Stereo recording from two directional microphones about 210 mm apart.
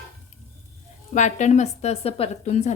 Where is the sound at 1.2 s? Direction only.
35° left (ahead or behind).